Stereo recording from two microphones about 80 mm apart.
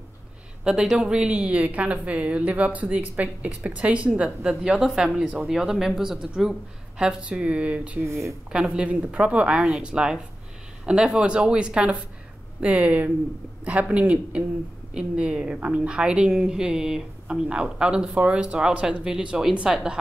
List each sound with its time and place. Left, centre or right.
0.7 s a woman's voice: centre
8.1 s a woman's voice: right
8.5 s a woman's voice: centre